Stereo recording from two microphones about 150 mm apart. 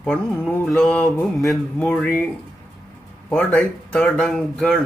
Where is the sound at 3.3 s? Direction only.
5° left (ahead or behind).